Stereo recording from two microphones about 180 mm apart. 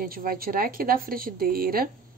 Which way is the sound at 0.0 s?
55° right (ahead or behind).